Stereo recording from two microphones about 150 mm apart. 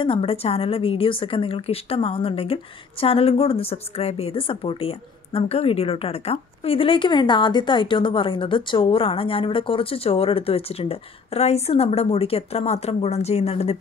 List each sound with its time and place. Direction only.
0.0 s a woman's voice: 35° left (ahead or behind)